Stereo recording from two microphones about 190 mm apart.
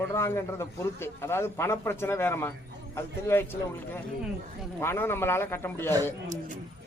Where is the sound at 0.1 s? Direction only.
15° left (ahead or behind).